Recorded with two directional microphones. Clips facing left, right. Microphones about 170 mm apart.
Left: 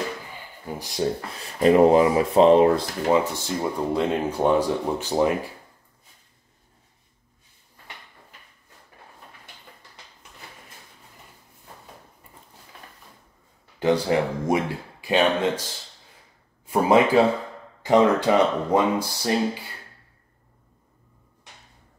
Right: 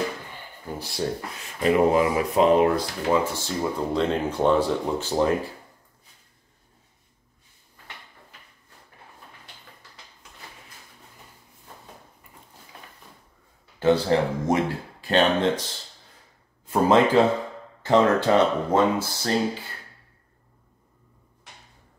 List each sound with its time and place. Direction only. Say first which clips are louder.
0.7 s speech: left 2 dB; 15° left (ahead or behind)
1.4 s speech: left 4 dB; 35° left (ahead or behind)
3.7 s speech: left 1 dB; 10° left (ahead or behind)
13.7 s speech: right 1 dB; 15° left (ahead or behind)
16.6 s speech: even; 10° left (ahead or behind)